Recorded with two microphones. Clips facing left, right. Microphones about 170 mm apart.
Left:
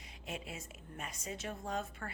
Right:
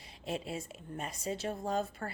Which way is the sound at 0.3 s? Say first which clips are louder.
Right 7 dB; 30° right (ahead or behind).